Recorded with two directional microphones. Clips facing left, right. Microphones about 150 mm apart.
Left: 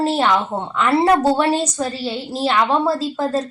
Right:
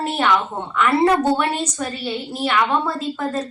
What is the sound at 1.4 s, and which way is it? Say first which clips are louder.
A woman's voice: left 4 dB; 30° left (ahead or behind).